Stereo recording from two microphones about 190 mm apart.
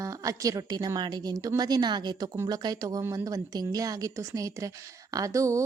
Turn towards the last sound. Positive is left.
turn(degrees=-15)  # may be behind; listen again after turning